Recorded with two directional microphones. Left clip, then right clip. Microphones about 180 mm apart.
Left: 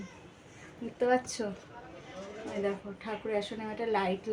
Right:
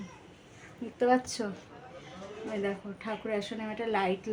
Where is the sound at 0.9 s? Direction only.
20° right (ahead or behind).